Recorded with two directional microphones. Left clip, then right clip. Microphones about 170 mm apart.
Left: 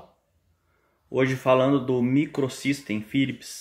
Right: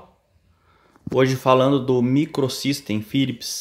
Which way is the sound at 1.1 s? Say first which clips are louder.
Right 4 dB; 30° right (ahead or behind).